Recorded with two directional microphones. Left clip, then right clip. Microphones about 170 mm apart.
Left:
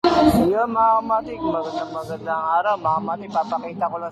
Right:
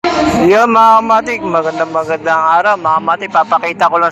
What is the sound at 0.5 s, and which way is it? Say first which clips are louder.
Speech: right 12 dB; 70° right (ahead or behind).